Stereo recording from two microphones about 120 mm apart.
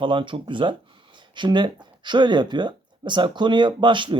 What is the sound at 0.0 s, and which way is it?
Speech, 45° right (ahead or behind).